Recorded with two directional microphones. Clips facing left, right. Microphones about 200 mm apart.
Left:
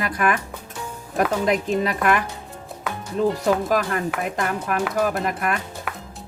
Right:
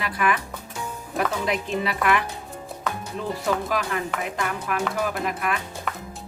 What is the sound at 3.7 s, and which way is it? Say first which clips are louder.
Speech: left 4 dB; 45° left (ahead or behind).